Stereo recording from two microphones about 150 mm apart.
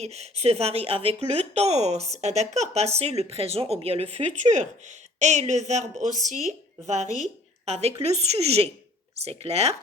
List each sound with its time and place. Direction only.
0.0 s speech: 45° right (ahead or behind)